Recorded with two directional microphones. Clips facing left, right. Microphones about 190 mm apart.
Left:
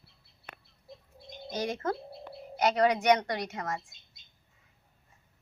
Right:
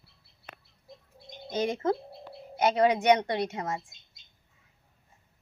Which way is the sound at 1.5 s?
25° right (ahead or behind).